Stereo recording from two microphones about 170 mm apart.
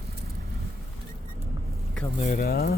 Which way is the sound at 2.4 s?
65° left (ahead or behind).